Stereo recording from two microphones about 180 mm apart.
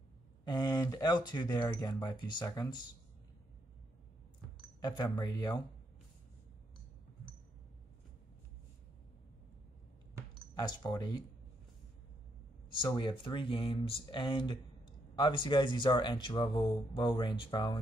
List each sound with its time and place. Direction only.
0.5 s speech: 20° left (ahead or behind)
4.7 s speech: 20° left (ahead or behind)
10.5 s speech: 20° left (ahead or behind)
12.7 s speech: 25° left (ahead or behind)